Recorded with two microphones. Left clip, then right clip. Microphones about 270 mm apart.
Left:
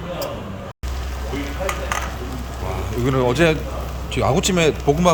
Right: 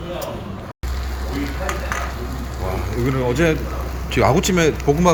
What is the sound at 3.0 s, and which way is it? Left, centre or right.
A man's voice, centre.